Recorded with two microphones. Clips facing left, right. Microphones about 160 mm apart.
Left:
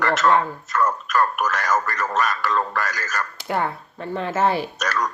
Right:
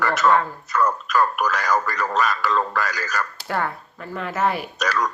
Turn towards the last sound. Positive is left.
turn(degrees=0)  # may be behind; listen again after turning